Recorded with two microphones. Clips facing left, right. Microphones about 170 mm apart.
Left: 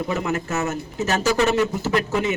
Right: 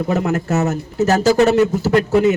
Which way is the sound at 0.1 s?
45° right (ahead or behind).